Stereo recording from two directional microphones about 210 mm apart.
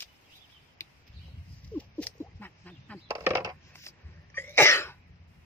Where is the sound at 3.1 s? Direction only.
15° right (ahead or behind).